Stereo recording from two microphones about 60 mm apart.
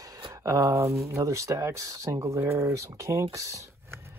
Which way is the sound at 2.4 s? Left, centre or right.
Right.